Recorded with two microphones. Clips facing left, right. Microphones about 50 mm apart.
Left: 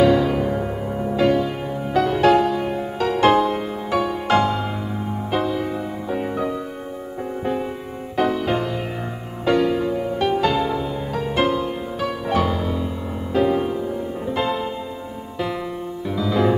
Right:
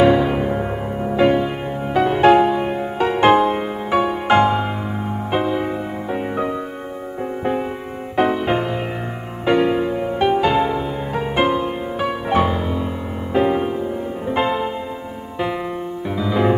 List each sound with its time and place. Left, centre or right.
0.0 s music: right
8.2 s music: right
16.2 s music: right